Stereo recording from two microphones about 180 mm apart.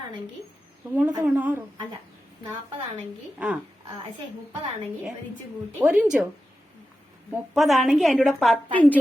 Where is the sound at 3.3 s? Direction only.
10° right (ahead or behind).